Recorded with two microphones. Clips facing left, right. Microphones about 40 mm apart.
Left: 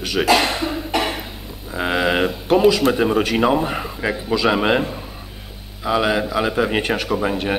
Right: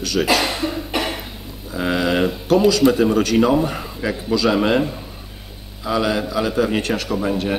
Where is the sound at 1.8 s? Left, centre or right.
Left.